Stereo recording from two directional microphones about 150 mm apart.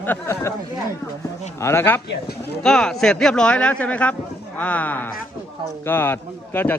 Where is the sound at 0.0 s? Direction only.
15° left (ahead or behind).